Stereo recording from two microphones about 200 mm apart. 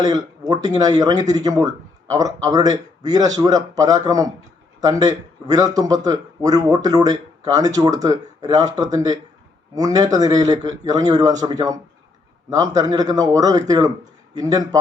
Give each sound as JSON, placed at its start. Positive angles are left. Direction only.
{"t": 0.0, "sound": "a man's voice", "side_deg": -20}